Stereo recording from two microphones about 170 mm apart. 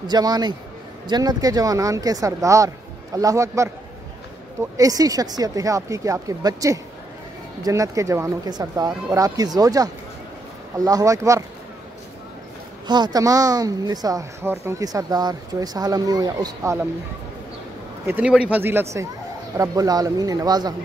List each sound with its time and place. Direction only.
0.0 s speech: 25° right (ahead or behind)
4.7 s speech: 20° right (ahead or behind)
12.8 s speech: 25° right (ahead or behind)
18.0 s speech: 10° right (ahead or behind)